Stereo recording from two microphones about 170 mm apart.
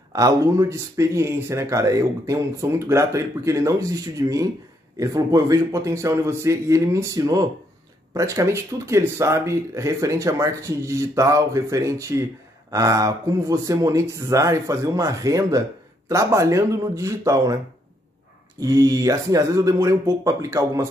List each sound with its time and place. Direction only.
0.1 s speech: 20° right (ahead or behind)
18.6 s speech: 20° right (ahead or behind)